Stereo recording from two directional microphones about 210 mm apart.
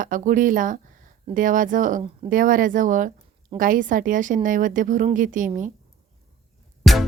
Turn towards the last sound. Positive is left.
turn(degrees=0)  # may be behind; listen again after turning